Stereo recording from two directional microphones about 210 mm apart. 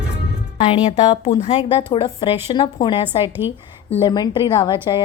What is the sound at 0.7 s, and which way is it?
A woman's voice, 20° left (ahead or behind).